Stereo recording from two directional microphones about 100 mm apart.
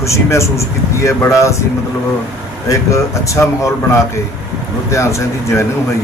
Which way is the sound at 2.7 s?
30° left (ahead or behind).